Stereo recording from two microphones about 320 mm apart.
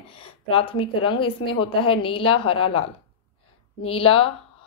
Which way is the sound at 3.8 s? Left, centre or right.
Centre.